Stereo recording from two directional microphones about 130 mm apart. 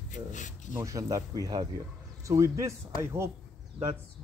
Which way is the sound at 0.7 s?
25° right (ahead or behind).